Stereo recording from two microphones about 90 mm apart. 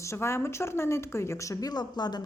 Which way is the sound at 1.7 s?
50° left (ahead or behind).